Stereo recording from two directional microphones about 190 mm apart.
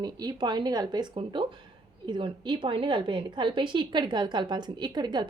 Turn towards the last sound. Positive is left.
turn(degrees=-20)  # may be behind; listen again after turning